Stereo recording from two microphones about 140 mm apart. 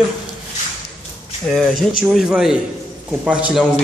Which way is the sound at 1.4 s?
Centre (ahead or behind).